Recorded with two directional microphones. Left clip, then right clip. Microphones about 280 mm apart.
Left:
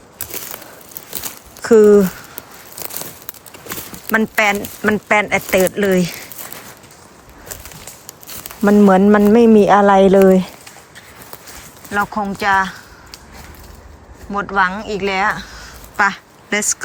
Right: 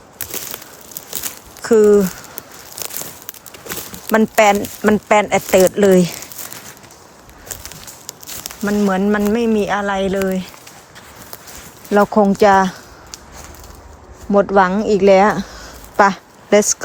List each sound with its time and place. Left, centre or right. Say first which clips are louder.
0.2 s crumpling: right 1 dB; centre
3.7 s a sound: right 1 dB; centre
4.1 s speech: right 3 dB; centre
4.5 s speech: right 3 dB; centre
4.8 s speech: left 1 dB; centre
7.4 s speech: right 1 dB; centre
11.9 s speech: right 6 dB; right
12.4 s a sound: right 1 dB; right
14.3 s a woman's voice: right 4 dB; right